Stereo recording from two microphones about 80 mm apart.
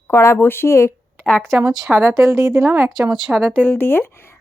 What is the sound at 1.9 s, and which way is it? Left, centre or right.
A woman's voice, right.